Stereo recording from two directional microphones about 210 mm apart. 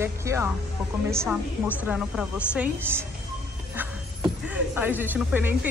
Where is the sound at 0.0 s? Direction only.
15° right (ahead or behind).